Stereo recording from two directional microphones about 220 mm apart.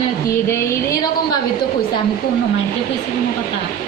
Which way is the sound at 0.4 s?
10° left (ahead or behind).